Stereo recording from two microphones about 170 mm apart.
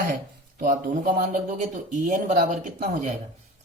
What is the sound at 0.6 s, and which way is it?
Speech, 55° right (ahead or behind).